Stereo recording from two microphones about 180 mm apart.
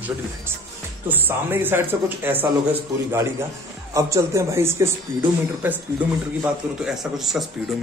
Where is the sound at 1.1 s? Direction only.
10° right (ahead or behind).